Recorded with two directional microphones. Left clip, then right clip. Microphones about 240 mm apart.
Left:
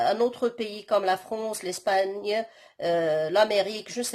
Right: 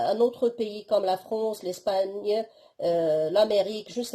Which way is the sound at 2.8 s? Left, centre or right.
Centre.